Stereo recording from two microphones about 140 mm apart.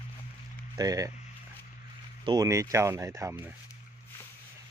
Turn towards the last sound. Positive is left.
turn(degrees=-20)  # may be behind; listen again after turning